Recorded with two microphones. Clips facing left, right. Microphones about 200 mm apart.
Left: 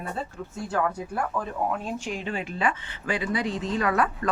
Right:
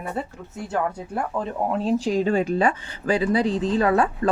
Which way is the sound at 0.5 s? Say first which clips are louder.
Right 1 dB; 25° right (ahead or behind).